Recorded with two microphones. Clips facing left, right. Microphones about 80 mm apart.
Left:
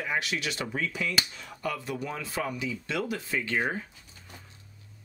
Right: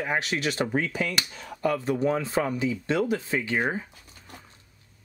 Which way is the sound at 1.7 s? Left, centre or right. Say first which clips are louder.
Right 8 dB; right.